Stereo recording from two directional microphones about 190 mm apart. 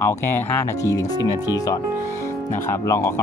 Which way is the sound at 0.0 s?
15° left (ahead or behind).